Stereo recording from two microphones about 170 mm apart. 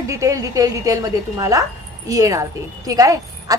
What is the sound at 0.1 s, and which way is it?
A woman's voice, 20° right (ahead or behind).